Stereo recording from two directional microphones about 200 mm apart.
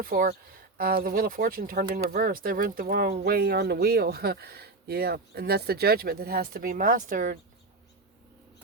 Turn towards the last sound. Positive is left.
turn(degrees=-40)  # may be behind; listen again after turning